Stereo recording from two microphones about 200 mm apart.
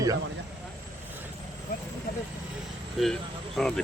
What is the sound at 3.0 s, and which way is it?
Speech, centre (ahead or behind).